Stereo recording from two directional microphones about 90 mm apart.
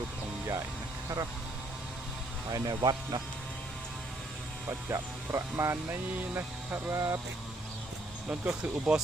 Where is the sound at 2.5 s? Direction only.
45° right (ahead or behind).